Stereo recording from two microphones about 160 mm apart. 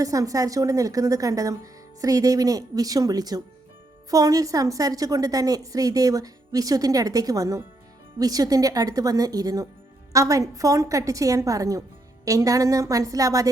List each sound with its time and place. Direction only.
0.0 s a woman's voice: 20° right (ahead or behind)